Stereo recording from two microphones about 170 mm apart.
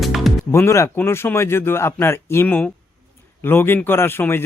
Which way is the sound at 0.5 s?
15° left (ahead or behind).